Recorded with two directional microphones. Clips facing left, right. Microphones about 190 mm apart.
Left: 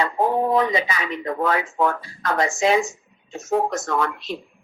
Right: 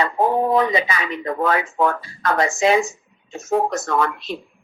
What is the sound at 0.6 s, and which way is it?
Speech, 65° right (ahead or behind).